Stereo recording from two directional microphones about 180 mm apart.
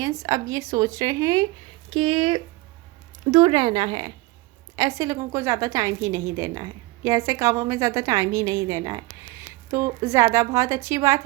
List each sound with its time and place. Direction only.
0.0 s speech: 20° right (ahead or behind)
1.9 s a woman's voice: 30° right (ahead or behind)